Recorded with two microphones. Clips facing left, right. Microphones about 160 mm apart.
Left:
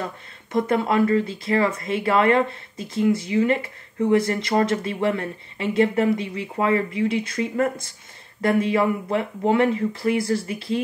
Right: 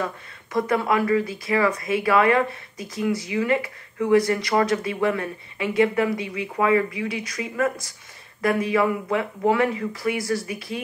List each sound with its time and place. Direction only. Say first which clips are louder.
0.5 s speech: left 1 dB; 25° left (ahead or behind)